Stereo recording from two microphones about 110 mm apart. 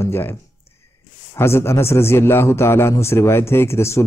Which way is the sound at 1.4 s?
25° left (ahead or behind).